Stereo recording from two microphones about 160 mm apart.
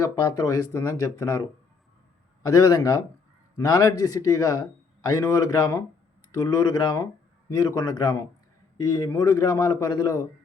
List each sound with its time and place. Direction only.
0.0 s speech: 20° left (ahead or behind)